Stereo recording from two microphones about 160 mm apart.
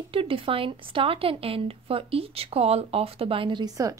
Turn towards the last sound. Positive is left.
turn(degrees=-25)  # may be behind; listen again after turning